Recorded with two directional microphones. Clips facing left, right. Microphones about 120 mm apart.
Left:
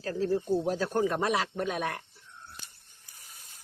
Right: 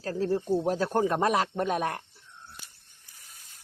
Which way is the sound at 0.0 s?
40° right (ahead or behind).